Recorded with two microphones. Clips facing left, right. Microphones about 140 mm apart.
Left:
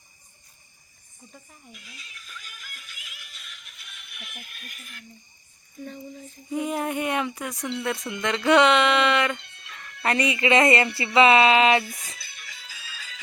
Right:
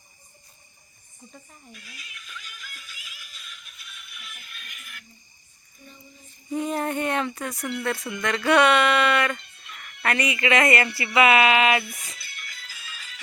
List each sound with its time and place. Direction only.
1.7 s music: 20° left (ahead or behind); by 4.9 s 45° left (ahead or behind)
5.8 s a sound: 90° left
6.5 s female singing: 10° left (ahead or behind)
7.7 s speech: 20° left (ahead or behind)